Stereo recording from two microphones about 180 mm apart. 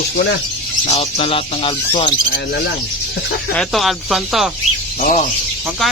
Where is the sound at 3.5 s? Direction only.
5° left (ahead or behind).